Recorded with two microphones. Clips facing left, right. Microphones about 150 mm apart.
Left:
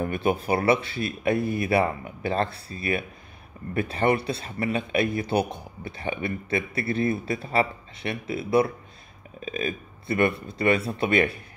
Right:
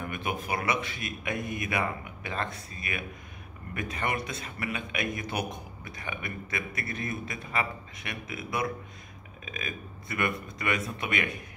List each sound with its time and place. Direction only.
0.0 s speech: 35° left (ahead or behind)